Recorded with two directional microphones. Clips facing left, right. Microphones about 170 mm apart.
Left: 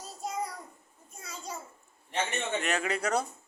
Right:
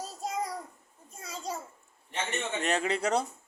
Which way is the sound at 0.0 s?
40° right (ahead or behind).